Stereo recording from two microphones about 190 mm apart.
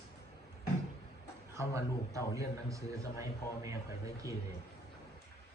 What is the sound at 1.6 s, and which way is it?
A man's voice, 15° right (ahead or behind).